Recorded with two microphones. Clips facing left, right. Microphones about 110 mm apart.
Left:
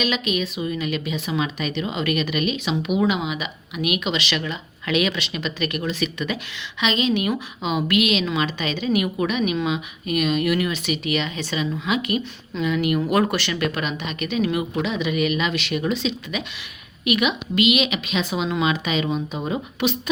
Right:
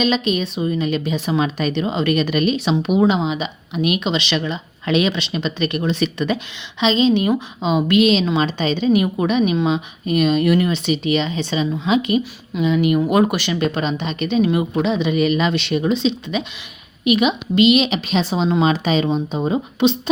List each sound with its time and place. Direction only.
0.0 s a woman's voice: 30° right (ahead or behind)